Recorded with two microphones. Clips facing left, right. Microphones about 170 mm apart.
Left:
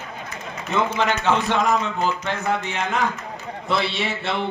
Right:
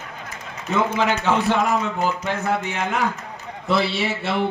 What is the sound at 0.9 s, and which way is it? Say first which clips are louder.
A man's voice: right 1 dB; 10° right (ahead or behind).